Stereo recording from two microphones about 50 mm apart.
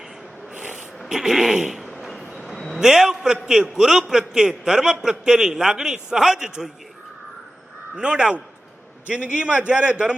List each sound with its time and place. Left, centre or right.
0.5 s snort: centre
1.0 s a sound: centre
2.7 s a man's voice: centre
7.9 s a man's voice: centre